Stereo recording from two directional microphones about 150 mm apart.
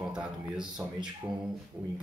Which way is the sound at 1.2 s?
15° right (ahead or behind).